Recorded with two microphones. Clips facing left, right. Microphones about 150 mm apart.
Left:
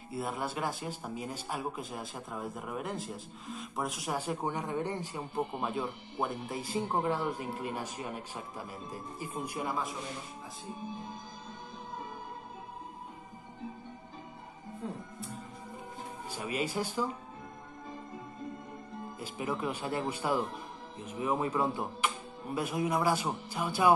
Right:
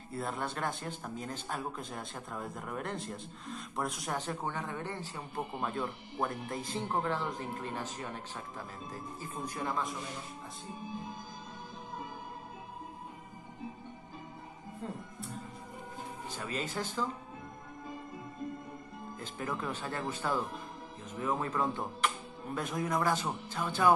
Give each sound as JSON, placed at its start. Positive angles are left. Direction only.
{"t": 0.1, "sound": "speech", "side_deg": 5}
{"t": 16.3, "sound": "speech", "side_deg": 10}
{"t": 19.1, "sound": "speech", "side_deg": 10}